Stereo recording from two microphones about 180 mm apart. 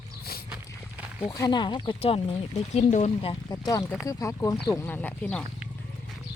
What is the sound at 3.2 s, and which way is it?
Speech, 25° left (ahead or behind).